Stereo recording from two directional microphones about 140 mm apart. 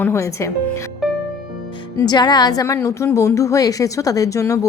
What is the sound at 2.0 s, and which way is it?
A woman's voice, 30° left (ahead or behind).